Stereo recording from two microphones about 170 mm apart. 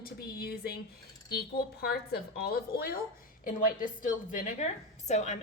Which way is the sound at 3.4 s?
55° left (ahead or behind).